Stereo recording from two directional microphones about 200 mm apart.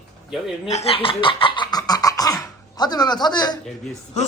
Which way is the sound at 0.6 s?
30° left (ahead or behind).